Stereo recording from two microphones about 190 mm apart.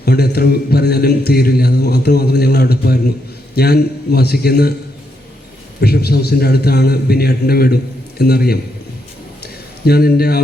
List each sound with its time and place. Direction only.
0.0 s speech: 55° left (ahead or behind)
5.8 s speech: 55° left (ahead or behind)
9.4 s a sound: 55° left (ahead or behind)